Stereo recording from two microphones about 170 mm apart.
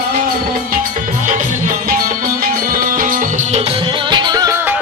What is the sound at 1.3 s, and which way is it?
Music, 50° right (ahead or behind).